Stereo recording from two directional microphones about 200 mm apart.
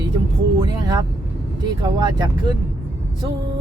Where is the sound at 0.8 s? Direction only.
20° right (ahead or behind).